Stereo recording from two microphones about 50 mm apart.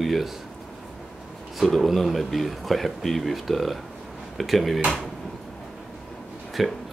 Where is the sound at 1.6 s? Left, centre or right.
Centre.